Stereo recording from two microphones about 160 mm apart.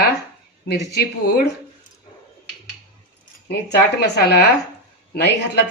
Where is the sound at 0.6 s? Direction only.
90° left.